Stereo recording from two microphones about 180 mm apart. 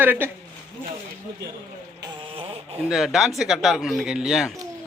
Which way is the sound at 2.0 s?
30° right (ahead or behind).